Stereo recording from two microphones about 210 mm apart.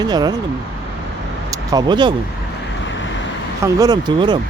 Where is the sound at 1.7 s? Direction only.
20° right (ahead or behind).